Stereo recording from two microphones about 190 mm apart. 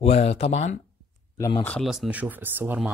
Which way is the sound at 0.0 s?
35° left (ahead or behind).